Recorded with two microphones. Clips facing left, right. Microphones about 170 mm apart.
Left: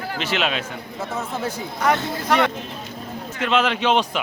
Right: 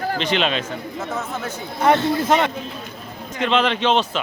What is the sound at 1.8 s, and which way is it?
Speech, 25° right (ahead or behind).